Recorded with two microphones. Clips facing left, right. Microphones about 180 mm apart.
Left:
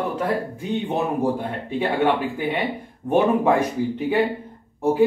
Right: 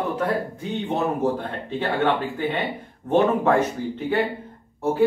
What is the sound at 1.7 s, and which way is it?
Speech, 10° left (ahead or behind).